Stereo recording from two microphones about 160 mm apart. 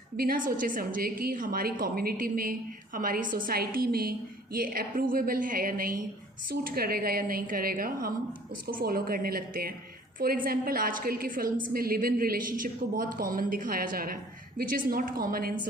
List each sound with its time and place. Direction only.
0.2 s a woman's voice: 60° right (ahead or behind)